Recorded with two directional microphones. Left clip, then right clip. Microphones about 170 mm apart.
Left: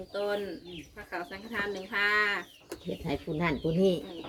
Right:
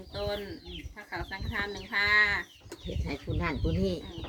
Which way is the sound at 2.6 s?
45° left (ahead or behind).